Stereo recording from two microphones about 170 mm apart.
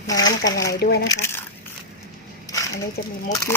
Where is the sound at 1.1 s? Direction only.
15° left (ahead or behind).